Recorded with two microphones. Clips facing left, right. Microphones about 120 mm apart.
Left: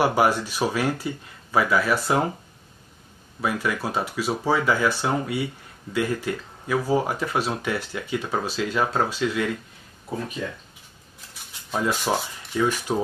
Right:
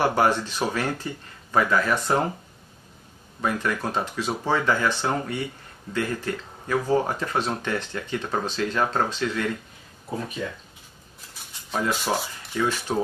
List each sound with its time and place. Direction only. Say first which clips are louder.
0.0 s speech: left 1 dB; 10° left (ahead or behind)
3.3 s speech: even; 10° left (ahead or behind)
11.8 s speech: left 1 dB; 10° left (ahead or behind)
12.1 s speech: left 1 dB; centre (ahead or behind)
12.6 s speech: left 2 dB; 15° left (ahead or behind)